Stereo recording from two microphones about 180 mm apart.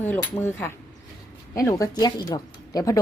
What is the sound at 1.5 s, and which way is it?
Speech, 20° left (ahead or behind).